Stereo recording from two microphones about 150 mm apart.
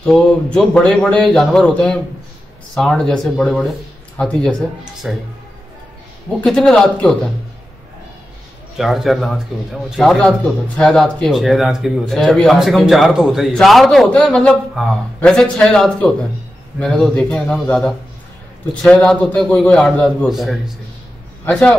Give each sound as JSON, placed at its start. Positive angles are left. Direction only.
{"t": 0.0, "sound": "speech", "side_deg": 5}
{"t": 6.4, "sound": "speech", "side_deg": 5}
{"t": 8.7, "sound": "a man's voice", "side_deg": 0}
{"t": 20.2, "sound": "a man's voice", "side_deg": 0}